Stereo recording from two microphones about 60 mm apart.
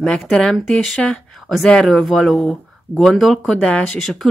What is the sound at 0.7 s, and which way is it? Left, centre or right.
Speech, left.